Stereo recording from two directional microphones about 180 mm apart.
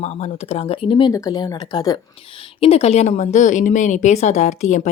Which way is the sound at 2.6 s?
35° left (ahead or behind).